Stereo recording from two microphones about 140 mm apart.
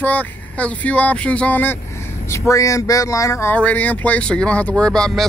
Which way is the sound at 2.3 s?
25° left (ahead or behind).